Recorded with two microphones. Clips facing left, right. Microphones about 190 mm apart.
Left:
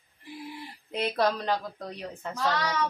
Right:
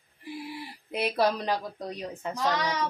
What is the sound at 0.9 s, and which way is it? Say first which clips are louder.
Speech: right 1 dB; 10° right (ahead or behind).